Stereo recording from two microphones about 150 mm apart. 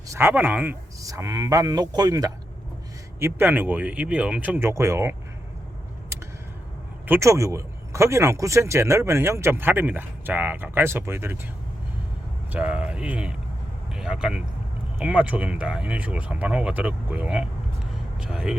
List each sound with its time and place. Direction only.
0.1 s speech: 15° right (ahead or behind)
7.1 s speech: 20° right (ahead or behind)
12.5 s speech: 10° right (ahead or behind)